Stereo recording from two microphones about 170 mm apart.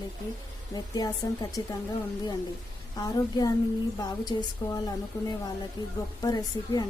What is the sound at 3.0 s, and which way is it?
A woman's voice, 20° left (ahead or behind).